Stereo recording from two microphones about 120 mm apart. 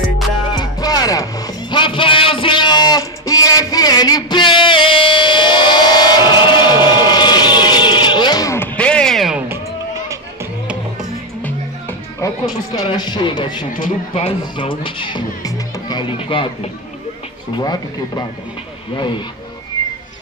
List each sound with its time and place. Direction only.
0.5 s music: 35° left (ahead or behind)
1.8 s a sound: 45° left (ahead or behind)
8.5 s music: 10° left (ahead or behind)
12.2 s music: 35° left (ahead or behind)
13.7 s speech: 60° left (ahead or behind)
14.6 s music: 45° left (ahead or behind)
15.4 s music: 35° left (ahead or behind)
17.6 s speech: 35° left (ahead or behind)
18.9 s music: 40° left (ahead or behind)